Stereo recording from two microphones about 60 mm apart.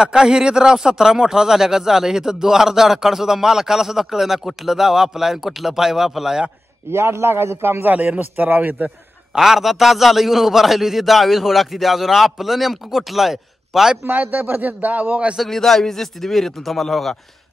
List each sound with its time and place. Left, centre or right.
0.0 s speech: centre
6.9 s a man's voice: right
7.8 s a man's voice: right
9.3 s a man's voice: centre
14.0 s a man's voice: right
15.3 s a man's voice: centre